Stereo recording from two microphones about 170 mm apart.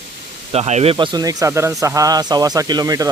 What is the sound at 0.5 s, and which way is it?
Speech, 40° right (ahead or behind).